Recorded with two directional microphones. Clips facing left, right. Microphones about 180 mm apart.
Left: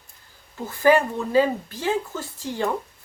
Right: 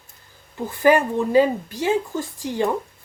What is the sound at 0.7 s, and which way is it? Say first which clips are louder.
A woman's voice: right 1 dB; 15° right (ahead or behind).